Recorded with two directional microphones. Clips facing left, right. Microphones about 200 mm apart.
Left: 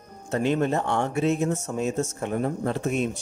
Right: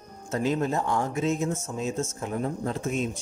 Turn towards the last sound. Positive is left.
turn(degrees=70)  # may be behind; listen again after turning